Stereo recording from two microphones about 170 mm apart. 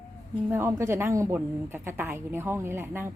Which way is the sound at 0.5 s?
15° right (ahead or behind).